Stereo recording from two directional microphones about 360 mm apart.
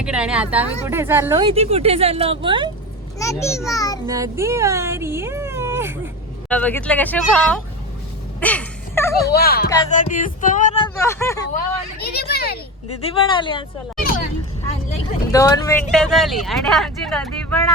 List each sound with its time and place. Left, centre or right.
0.0 s a woman's voice: centre
3.2 s speech: centre
4.0 s a woman's voice: centre
6.5 s speech: centre
8.4 s a sound: centre
9.3 s speech: left; by 11.4 s centre
11.5 s speech: left
13.0 s speech: centre
14.8 s speech: centre